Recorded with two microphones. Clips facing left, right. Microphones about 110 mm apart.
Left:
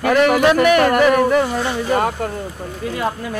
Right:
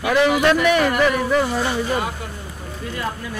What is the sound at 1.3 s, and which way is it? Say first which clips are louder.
Speech: left 2 dB; centre (ahead or behind).